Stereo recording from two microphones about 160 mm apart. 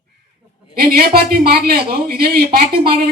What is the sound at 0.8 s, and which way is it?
A man's voice, 70° right (ahead or behind).